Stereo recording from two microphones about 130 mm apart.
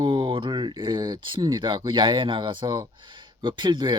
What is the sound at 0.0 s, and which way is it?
Speech, 40° right (ahead or behind).